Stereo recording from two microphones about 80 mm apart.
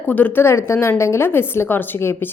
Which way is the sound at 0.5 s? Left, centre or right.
Left.